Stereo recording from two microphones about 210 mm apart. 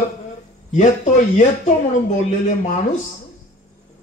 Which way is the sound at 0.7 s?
35° left (ahead or behind).